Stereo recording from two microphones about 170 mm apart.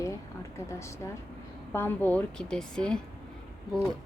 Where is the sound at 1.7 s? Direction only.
10° left (ahead or behind).